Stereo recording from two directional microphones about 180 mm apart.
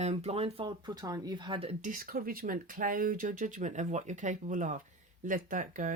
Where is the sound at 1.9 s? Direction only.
50° right (ahead or behind).